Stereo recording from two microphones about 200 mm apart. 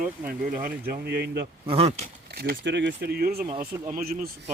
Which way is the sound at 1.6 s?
30° right (ahead or behind).